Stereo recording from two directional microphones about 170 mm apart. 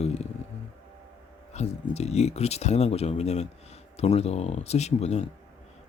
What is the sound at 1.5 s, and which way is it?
Speech, 40° left (ahead or behind).